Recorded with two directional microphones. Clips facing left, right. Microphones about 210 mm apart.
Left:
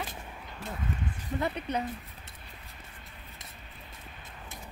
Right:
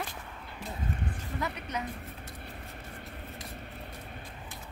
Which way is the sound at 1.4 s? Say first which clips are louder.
Left 4 dB; 30° left (ahead or behind).